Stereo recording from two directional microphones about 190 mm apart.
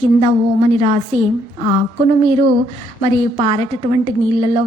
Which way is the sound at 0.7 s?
30° right (ahead or behind).